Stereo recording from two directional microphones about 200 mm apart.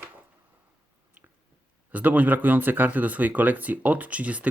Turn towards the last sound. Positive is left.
turn(degrees=-5)  # may be behind; listen again after turning